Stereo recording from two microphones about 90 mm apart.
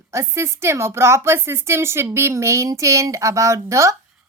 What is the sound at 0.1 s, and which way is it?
A woman's voice, 30° right (ahead or behind).